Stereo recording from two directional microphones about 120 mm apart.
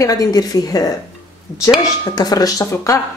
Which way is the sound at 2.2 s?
35° left (ahead or behind).